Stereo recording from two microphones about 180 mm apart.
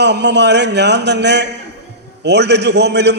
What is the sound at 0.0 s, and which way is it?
A man's voice, 70° right (ahead or behind).